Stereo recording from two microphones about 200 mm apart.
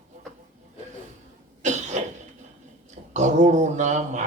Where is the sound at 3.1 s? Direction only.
35° right (ahead or behind).